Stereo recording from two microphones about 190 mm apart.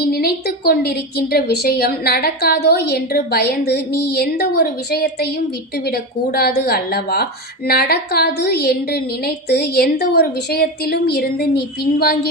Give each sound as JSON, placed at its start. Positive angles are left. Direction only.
{"t": 0.1, "sound": "a woman's voice", "side_deg": 55}